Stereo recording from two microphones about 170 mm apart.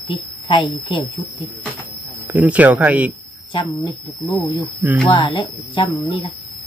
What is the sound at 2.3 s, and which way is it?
Speech, 10° right (ahead or behind).